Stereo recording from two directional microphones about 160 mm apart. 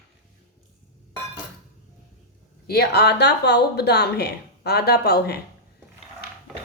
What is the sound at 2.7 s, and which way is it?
A woman's voice, 85° left.